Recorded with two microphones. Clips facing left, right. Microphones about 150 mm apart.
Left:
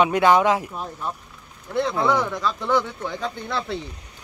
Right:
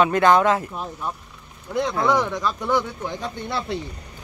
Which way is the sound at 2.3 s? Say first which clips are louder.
Even; 15° right (ahead or behind).